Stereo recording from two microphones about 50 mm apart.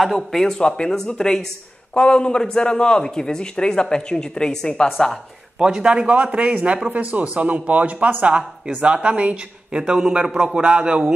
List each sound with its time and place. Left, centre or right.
0.0 s a man's voice: centre
5.6 s speech: centre